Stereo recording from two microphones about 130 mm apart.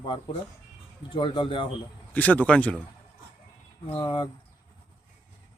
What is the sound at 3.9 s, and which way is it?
Speech, 40° left (ahead or behind).